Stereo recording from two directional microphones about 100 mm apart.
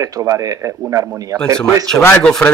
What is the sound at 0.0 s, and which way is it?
A man's voice, 35° right (ahead or behind).